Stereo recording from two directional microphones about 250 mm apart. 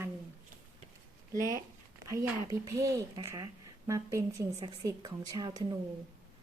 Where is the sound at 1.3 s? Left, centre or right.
Centre.